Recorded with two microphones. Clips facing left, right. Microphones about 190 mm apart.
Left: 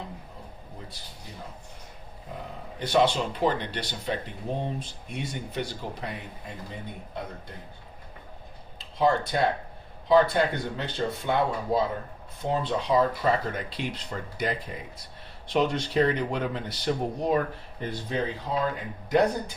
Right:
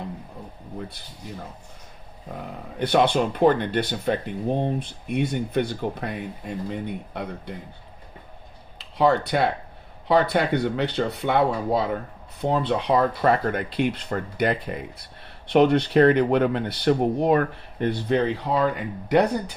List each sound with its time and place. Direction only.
2.7 s speech: 60° right (ahead or behind)
6.7 s speech: 65° right (ahead or behind)
8.8 s speech: 65° right (ahead or behind)